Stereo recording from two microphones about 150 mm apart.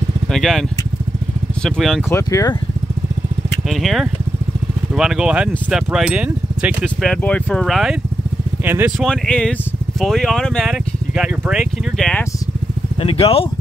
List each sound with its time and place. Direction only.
0.3 s speech: centre (ahead or behind)
2.0 s speech: 20° left (ahead or behind)
3.7 s speech: centre (ahead or behind)
7.0 s speech: 5° left (ahead or behind)
8.6 s speech: 15° right (ahead or behind)
9.0 s speech: 5° left (ahead or behind)
13.0 s speech: 40° left (ahead or behind)